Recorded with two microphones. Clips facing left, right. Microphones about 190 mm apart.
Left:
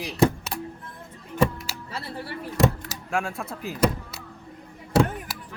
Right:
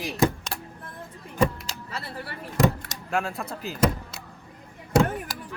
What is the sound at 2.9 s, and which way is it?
Speech, centre (ahead or behind).